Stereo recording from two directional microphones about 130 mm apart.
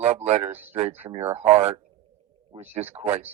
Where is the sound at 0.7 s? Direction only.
55° right (ahead or behind).